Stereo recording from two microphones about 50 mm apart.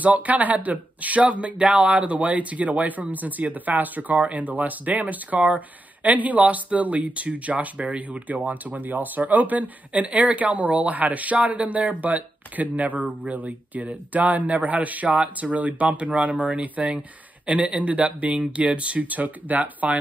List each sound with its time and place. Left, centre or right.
0.0 s speech: right